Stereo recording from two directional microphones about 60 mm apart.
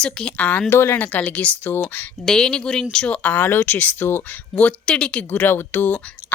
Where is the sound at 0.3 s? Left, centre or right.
Left.